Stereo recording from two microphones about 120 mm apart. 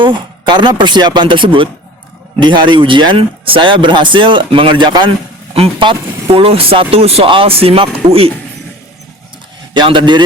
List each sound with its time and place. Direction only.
0.0 s speech: 40° right (ahead or behind)
5.5 s speech: 50° right (ahead or behind)
9.7 s speech: 40° right (ahead or behind)